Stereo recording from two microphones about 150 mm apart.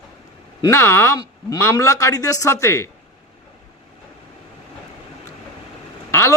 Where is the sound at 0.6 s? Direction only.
20° left (ahead or behind).